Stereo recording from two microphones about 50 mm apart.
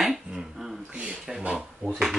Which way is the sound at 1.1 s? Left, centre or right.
Centre.